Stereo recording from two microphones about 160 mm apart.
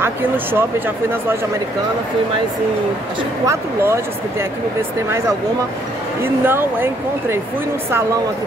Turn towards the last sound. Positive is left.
turn(degrees=-15)  # may be behind; listen again after turning